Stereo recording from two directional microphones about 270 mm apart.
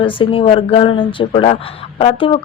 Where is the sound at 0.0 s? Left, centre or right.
Centre.